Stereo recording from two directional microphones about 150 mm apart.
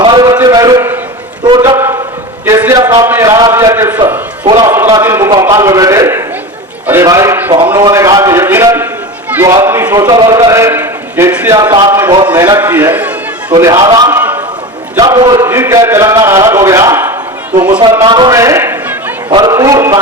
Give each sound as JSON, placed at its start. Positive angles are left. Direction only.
{"t": 0.0, "sound": "a sound", "side_deg": -30}
{"t": 1.5, "sound": "a man's voice", "side_deg": -30}
{"t": 1.7, "sound": "a sound", "side_deg": -20}
{"t": 2.5, "sound": "a man's voice", "side_deg": -20}
{"t": 4.4, "sound": "a man's voice", "side_deg": -30}
{"t": 11.5, "sound": "a man's voice", "side_deg": -25}
{"t": 13.6, "sound": "a man's voice", "side_deg": -25}
{"t": 14.1, "sound": "a sound", "side_deg": -15}
{"t": 14.9, "sound": "a man's voice", "side_deg": -20}
{"t": 15.4, "sound": "a man's voice", "side_deg": -15}
{"t": 18.0, "sound": "a man's voice", "side_deg": -30}